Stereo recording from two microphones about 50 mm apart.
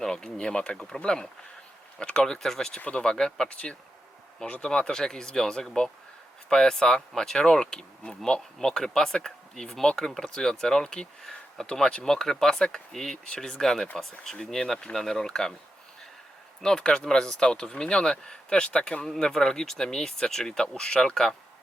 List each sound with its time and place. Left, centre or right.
0.0 s speech: centre
3.5 s speech: left
11.2 s a sound: centre
11.6 s speech: centre
16.6 s speech: centre